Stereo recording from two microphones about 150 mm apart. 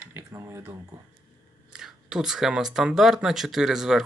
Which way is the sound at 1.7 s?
5° right (ahead or behind).